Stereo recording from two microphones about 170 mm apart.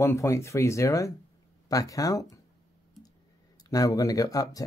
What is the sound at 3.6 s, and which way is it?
Speech, 20° left (ahead or behind).